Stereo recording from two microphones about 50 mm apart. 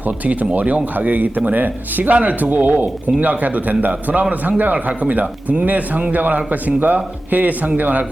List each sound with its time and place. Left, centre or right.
0.0 s a man's voice: right